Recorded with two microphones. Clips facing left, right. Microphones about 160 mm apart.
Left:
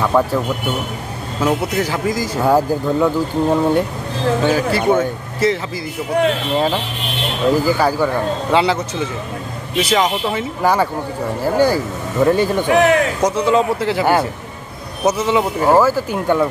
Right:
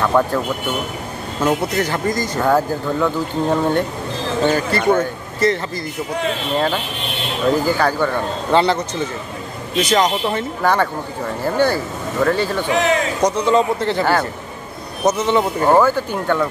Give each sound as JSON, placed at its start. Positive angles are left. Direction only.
{"t": 0.0, "sound": "speech", "side_deg": 5}
{"t": 1.4, "sound": "speech", "side_deg": 5}
{"t": 7.5, "sound": "speech", "side_deg": 10}
{"t": 12.6, "sound": "a man's voice", "side_deg": 55}
{"t": 13.2, "sound": "speech", "side_deg": 5}